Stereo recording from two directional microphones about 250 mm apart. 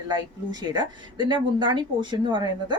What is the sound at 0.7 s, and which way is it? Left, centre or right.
A woman's voice, centre.